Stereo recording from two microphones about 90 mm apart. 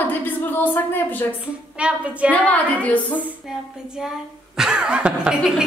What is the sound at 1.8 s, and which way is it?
Speech, 15° right (ahead or behind).